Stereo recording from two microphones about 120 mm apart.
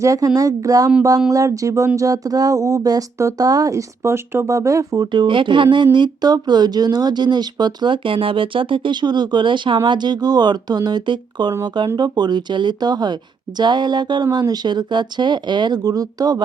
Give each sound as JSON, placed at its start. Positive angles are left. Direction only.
{"t": 0.0, "sound": "speech", "side_deg": -25}
{"t": 5.1, "sound": "speech", "side_deg": -40}